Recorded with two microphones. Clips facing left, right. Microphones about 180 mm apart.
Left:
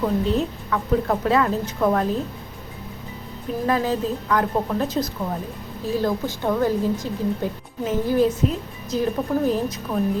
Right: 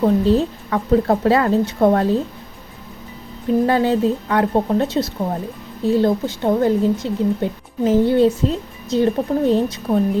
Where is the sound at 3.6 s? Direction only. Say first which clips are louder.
Right 4 dB; 30° right (ahead or behind).